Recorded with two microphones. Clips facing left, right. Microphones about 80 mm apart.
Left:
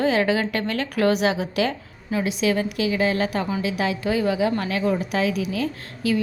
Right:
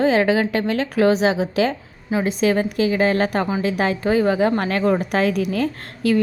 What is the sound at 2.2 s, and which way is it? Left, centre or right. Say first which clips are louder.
A woman's voice: right 4 dB; right.